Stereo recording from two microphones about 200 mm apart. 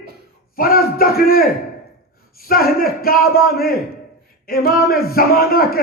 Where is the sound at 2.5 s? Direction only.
50° left (ahead or behind).